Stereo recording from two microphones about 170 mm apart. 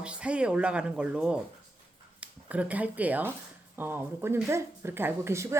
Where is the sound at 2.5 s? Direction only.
10° right (ahead or behind).